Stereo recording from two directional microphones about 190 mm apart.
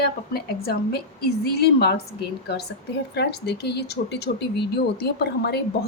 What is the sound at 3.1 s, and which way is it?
A woman's voice, 60° left (ahead or behind).